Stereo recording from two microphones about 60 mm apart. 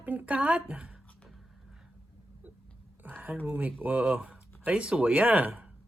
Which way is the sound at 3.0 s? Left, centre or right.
Right.